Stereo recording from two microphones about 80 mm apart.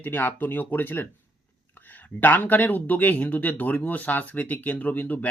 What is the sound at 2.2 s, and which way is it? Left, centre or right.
Speech, left.